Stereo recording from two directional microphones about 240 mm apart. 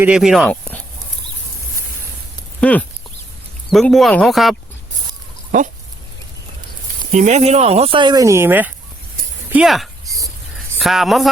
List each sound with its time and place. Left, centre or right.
0.0 s speech: centre
2.6 s speech: centre
7.1 s speech: right; by 11.3 s centre